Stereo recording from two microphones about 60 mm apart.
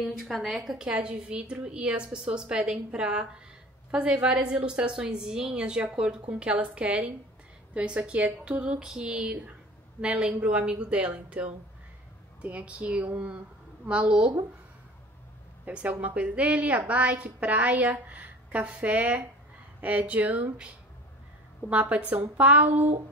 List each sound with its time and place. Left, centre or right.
0.0 s a woman's voice: centre
15.6 s a woman's voice: right